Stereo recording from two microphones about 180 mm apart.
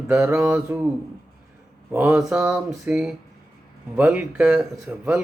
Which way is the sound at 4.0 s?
10° right (ahead or behind).